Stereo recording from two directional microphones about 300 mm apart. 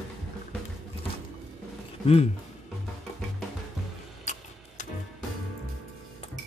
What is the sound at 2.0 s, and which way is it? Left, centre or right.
Speech, centre.